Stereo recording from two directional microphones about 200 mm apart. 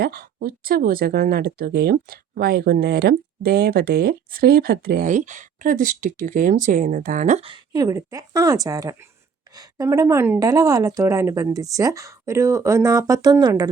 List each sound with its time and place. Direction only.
0.0 s a woman's voice: 50° right (ahead or behind); by 13.7 s 15° right (ahead or behind)